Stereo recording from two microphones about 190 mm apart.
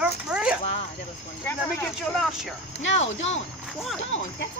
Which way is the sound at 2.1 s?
Centre (ahead or behind).